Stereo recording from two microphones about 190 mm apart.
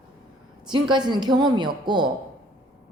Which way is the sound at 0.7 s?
25° right (ahead or behind).